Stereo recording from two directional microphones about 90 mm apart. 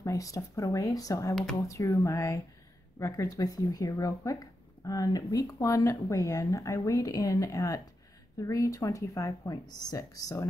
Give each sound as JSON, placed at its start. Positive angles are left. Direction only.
{"t": 0.0, "sound": "speech", "side_deg": 40}
{"t": 1.3, "sound": "speech", "side_deg": 5}
{"t": 1.7, "sound": "speech", "side_deg": 35}